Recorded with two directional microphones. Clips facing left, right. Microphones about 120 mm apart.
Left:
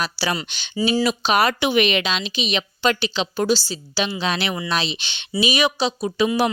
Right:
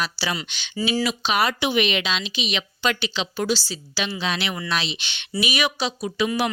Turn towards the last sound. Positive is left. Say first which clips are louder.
# left 4 dB
turn(degrees=30)  # may be behind; listen again after turning